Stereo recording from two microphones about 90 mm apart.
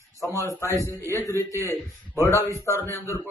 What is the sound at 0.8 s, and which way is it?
Speech, 30° right (ahead or behind).